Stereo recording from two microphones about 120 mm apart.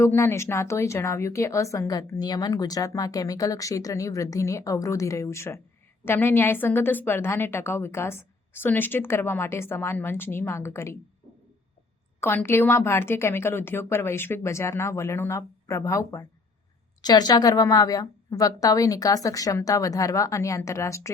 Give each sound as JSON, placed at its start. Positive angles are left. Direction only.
{"t": 0.0, "sound": "speech", "side_deg": 20}
{"t": 12.2, "sound": "speech", "side_deg": 20}